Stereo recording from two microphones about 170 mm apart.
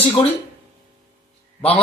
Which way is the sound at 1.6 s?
35° left (ahead or behind).